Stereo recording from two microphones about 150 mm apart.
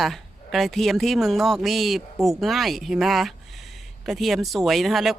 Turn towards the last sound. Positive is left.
turn(degrees=0)  # may be behind; listen again after turning